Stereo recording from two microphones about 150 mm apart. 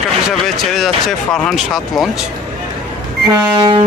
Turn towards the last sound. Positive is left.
turn(degrees=-30)  # may be behind; listen again after turning